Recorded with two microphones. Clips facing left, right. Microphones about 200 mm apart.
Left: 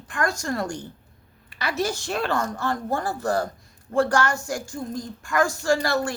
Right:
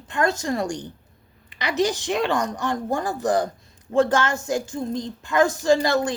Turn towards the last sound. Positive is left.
turn(degrees=-20)  # may be behind; listen again after turning